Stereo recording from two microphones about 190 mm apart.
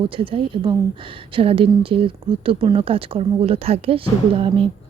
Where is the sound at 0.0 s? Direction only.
30° right (ahead or behind).